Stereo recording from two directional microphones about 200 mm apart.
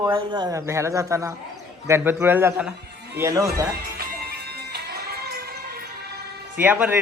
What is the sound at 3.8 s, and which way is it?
Music, 50° right (ahead or behind).